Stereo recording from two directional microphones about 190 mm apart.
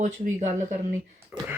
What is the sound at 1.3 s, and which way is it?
Speech, 10° right (ahead or behind).